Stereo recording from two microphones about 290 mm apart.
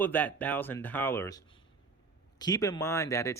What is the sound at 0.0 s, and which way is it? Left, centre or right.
Speech, centre.